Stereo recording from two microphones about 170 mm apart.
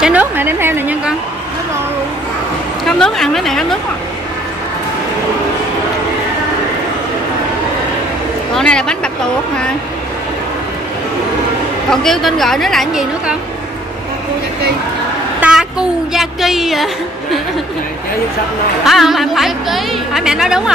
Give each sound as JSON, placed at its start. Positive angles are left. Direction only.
{"t": 0.0, "sound": "a sound", "side_deg": -10}
{"t": 2.8, "sound": "a woman's voice", "side_deg": 0}
{"t": 8.5, "sound": "speech", "side_deg": 5}
{"t": 11.9, "sound": "a woman's voice", "side_deg": 0}
{"t": 15.4, "sound": "a woman's voice", "side_deg": -5}
{"t": 18.9, "sound": "a woman's voice", "side_deg": 0}